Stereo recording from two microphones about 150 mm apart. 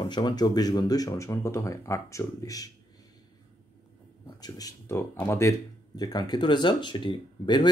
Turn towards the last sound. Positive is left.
turn(degrees=30)  # may be behind; listen again after turning